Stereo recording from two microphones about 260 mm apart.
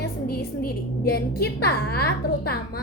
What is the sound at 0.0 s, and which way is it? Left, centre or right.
A woman's voice, left.